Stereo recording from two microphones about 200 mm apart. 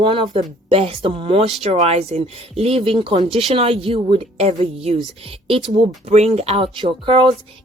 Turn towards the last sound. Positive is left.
turn(degrees=-25)  # may be behind; listen again after turning